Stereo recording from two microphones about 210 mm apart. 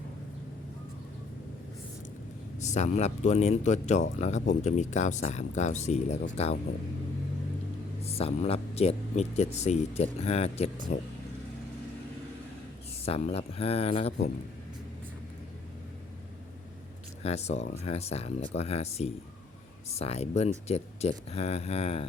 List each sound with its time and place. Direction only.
2.6 s speech: 35° left (ahead or behind)
8.0 s speech: 30° left (ahead or behind)
13.0 s speech: 30° left (ahead or behind)
17.2 s speech: 30° left (ahead or behind)